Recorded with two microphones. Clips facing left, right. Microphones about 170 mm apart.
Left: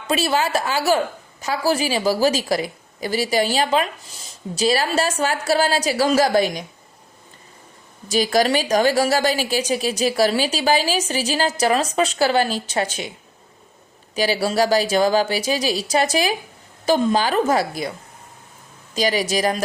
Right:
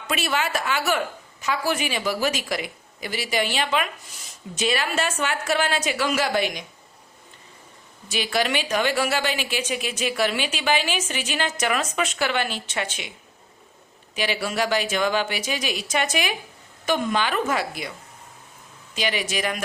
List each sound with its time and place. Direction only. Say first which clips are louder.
0.1 s a woman's voice: left 5 dB; 35° left (ahead or behind)
8.0 s a woman's voice: left 7 dB; 40° left (ahead or behind)
14.2 s a woman's voice: left 6 dB; 35° left (ahead or behind)
18.9 s a woman's voice: left 6 dB; 40° left (ahead or behind)